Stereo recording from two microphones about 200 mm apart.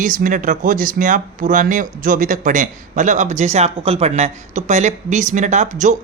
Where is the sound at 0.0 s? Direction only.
40° right (ahead or behind).